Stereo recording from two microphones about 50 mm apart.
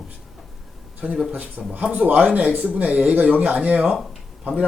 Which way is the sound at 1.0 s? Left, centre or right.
Right.